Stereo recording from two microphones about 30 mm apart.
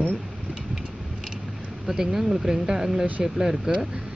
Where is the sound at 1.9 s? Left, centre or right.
Centre.